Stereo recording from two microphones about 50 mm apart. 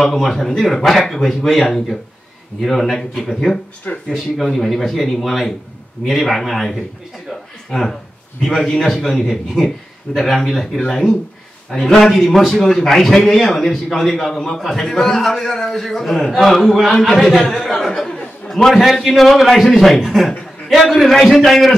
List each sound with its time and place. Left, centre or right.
0.0 s a man's voice: centre
3.9 s speech: left
4.4 s a man's voice: centre
8.4 s a man's voice: centre